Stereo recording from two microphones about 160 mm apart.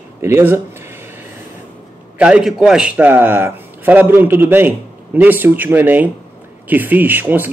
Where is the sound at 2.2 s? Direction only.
5° right (ahead or behind).